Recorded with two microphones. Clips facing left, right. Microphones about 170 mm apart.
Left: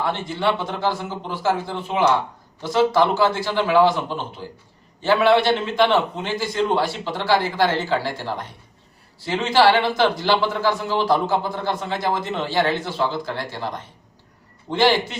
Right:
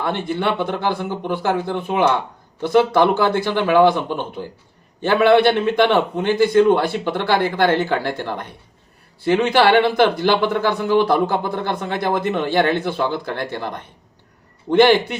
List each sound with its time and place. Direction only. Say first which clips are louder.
0.0 s speech: right 1 dB; 55° right (ahead or behind)